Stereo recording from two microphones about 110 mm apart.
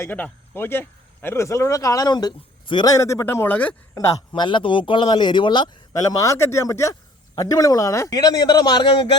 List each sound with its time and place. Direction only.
0.0 s speech: 20° left (ahead or behind); by 2.9 s 40° left (ahead or behind)
2.9 s speech: 30° left (ahead or behind)
3.9 s speech: 35° left (ahead or behind)
4.4 s speech: 50° left (ahead or behind)
6.1 s speech: 30° left (ahead or behind)